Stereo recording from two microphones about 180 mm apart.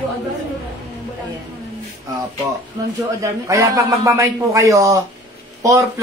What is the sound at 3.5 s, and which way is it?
A man's voice, 15° right (ahead or behind).